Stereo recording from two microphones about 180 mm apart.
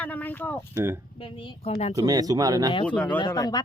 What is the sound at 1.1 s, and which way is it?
Speech, 30° left (ahead or behind).